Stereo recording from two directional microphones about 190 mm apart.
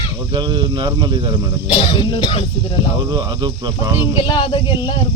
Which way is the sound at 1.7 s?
25° left (ahead or behind).